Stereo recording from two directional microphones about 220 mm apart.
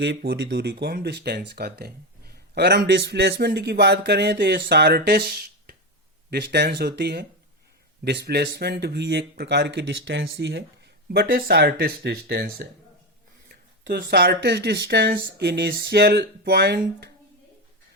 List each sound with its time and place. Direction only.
0.0 s speech: 50° right (ahead or behind)